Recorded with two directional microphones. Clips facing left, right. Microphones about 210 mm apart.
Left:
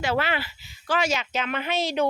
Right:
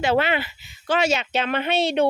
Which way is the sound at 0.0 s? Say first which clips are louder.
Right 5 dB; 25° right (ahead or behind).